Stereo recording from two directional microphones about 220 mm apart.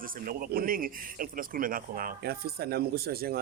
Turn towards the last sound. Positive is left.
turn(degrees=-45)  # may be behind; listen again after turning